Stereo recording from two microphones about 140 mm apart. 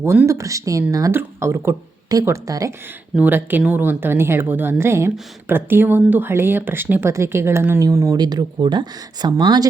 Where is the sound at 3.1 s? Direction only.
15° right (ahead or behind).